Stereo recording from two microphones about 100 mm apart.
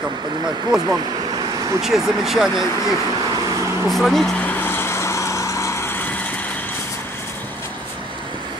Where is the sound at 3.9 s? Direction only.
Centre (ahead or behind).